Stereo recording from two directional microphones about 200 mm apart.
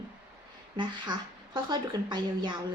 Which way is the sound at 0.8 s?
20° right (ahead or behind).